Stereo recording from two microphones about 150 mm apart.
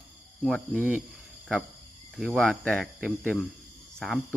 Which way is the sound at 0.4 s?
Centre (ahead or behind).